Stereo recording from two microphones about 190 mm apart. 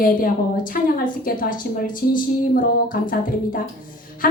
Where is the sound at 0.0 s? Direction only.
50° left (ahead or behind).